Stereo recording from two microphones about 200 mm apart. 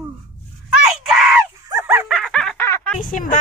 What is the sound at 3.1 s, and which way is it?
Speech, 40° left (ahead or behind).